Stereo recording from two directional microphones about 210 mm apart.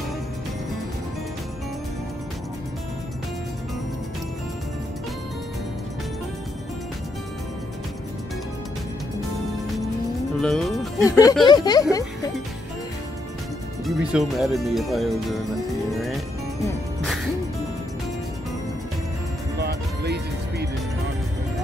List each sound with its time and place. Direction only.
10.4 s speech: centre (ahead or behind)
11.1 s speech: 15° left (ahead or behind)
13.8 s speech: centre (ahead or behind)
17.0 s music: centre (ahead or behind)
19.6 s music: 50° right (ahead or behind)